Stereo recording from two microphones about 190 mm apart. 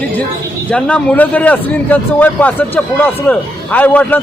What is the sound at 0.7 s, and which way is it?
A man's voice, 5° left (ahead or behind).